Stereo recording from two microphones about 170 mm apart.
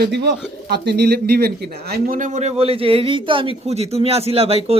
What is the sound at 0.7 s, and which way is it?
Speech, 75° right (ahead or behind).